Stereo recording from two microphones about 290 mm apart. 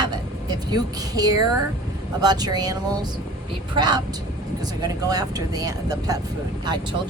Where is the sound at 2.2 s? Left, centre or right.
Centre.